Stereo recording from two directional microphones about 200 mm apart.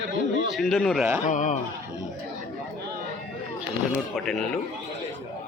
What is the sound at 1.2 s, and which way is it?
Speech, 35° left (ahead or behind).